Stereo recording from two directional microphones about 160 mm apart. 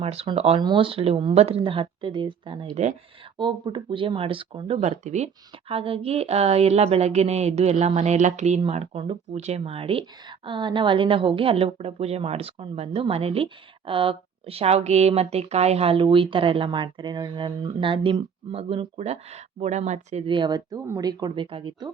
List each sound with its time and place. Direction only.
0.0 s speech: 40° right (ahead or behind)
20.2 s speech: 30° right (ahead or behind)